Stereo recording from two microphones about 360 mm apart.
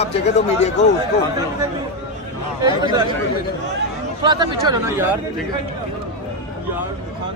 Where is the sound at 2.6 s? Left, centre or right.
Centre.